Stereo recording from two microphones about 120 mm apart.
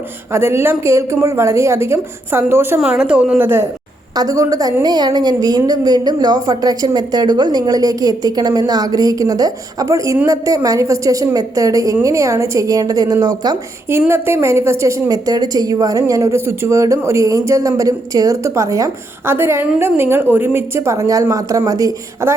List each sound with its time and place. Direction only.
0.3 s a woman's voice: 20° right (ahead or behind)
3.0 s a woman's voice: 5° right (ahead or behind)
3.4 s a woman's voice: 20° right (ahead or behind)
4.1 s a woman's voice: 30° right (ahead or behind)
14.1 s a woman's voice: 20° right (ahead or behind)